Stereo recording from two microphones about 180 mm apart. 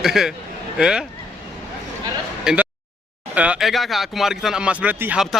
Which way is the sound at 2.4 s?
5° right (ahead or behind).